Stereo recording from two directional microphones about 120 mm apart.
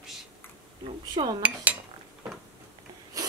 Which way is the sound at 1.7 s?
15° right (ahead or behind).